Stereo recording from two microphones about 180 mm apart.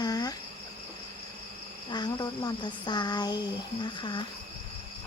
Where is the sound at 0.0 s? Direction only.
20° left (ahead or behind).